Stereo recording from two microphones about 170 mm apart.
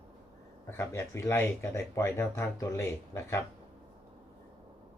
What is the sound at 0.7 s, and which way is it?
Speech, 15° left (ahead or behind).